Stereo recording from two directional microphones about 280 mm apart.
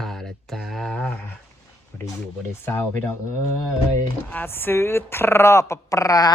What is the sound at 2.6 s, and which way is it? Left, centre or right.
Speech, centre.